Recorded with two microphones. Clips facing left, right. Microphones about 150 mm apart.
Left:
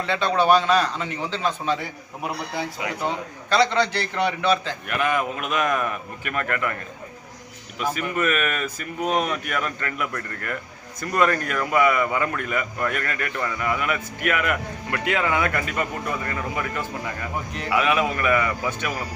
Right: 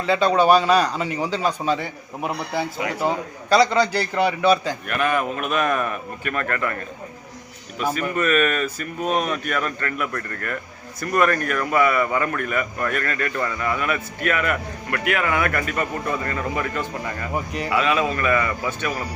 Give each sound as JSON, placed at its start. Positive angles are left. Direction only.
{"t": 0.0, "sound": "a man's voice", "side_deg": -5}
{"t": 3.5, "sound": "a man's voice", "side_deg": -5}
{"t": 4.9, "sound": "a man's voice", "side_deg": 15}
{"t": 7.9, "sound": "a man's voice", "side_deg": 10}